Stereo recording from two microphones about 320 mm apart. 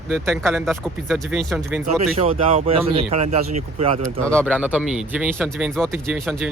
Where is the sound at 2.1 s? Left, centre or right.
Centre.